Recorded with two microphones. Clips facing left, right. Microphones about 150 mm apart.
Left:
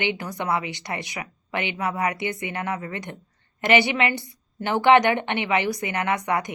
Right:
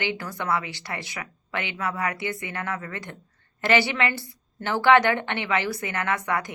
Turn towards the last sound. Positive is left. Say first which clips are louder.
# left 2 dB
turn(degrees=20)  # may be behind; listen again after turning